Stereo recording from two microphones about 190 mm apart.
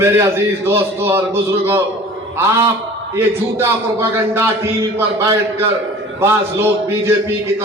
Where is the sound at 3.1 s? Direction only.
15° right (ahead or behind).